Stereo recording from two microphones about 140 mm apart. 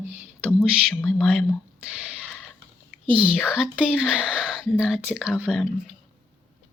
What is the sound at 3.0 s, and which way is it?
Speech, 40° right (ahead or behind).